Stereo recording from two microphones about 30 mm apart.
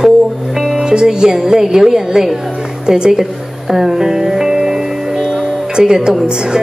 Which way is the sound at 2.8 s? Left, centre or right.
Right.